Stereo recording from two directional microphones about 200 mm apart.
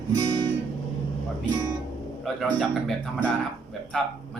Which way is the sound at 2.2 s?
Centre (ahead or behind).